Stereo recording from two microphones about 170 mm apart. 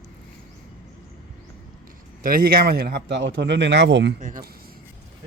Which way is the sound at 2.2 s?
60° right (ahead or behind).